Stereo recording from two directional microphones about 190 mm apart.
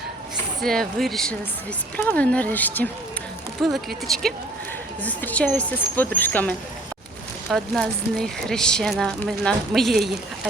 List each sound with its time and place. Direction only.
0.6 s speech: centre (ahead or behind)